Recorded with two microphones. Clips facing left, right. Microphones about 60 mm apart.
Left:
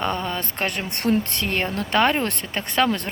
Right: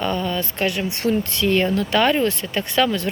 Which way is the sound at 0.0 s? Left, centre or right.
Left.